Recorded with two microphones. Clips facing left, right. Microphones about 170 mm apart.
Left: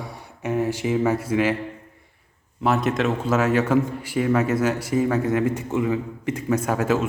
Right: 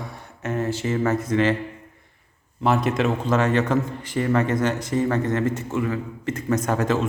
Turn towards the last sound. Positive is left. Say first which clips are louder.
# even
turn(degrees=5)  # may be behind; listen again after turning